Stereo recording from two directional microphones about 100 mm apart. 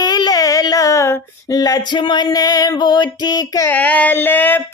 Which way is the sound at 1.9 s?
50° left (ahead or behind).